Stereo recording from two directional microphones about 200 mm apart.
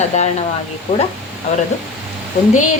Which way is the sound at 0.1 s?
35° left (ahead or behind).